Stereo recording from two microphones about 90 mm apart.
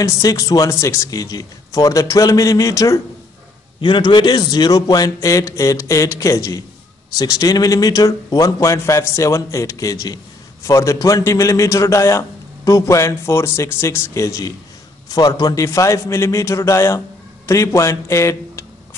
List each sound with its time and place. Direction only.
0.0 s speech: 40° left (ahead or behind)
3.8 s a man's voice: 65° left (ahead or behind); by 14.5 s 35° left (ahead or behind)
15.0 s speech: 45° left (ahead or behind)